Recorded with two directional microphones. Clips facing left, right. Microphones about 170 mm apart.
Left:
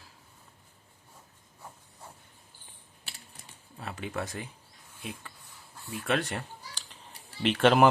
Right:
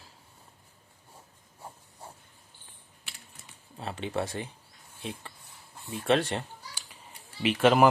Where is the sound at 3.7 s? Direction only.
25° right (ahead or behind).